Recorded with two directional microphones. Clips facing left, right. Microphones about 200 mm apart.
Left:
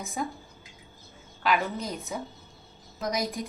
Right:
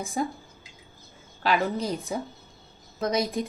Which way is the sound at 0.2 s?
35° right (ahead or behind).